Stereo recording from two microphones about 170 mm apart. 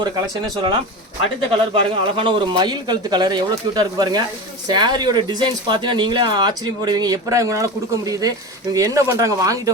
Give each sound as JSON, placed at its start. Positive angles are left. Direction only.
{"t": 1.5, "sound": "speech", "side_deg": -35}